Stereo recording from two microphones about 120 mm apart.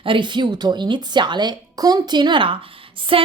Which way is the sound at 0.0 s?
45° right (ahead or behind).